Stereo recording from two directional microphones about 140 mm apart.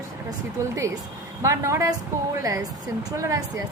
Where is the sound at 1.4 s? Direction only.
20° right (ahead or behind).